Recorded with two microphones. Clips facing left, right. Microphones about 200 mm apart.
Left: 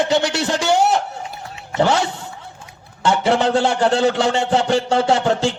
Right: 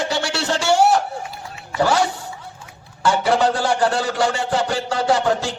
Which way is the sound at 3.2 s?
25° left (ahead or behind).